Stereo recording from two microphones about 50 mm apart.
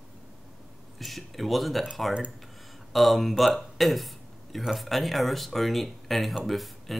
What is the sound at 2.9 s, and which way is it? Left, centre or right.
Speech, centre.